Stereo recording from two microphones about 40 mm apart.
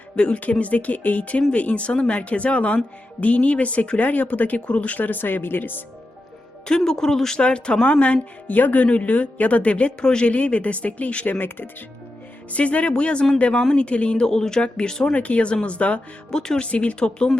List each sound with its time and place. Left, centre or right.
0.2 s speech: left
0.6 s speech: left
5.0 s speech: left
6.7 s speech: centre
7.3 s speech: left
7.9 s speech: left
10.0 s speech: left
10.2 s speech: left
11.3 s speech: left
12.5 s speech: left
14.3 s speech: centre
15.1 s speech: left
16.3 s speech: centre
16.6 s speech: left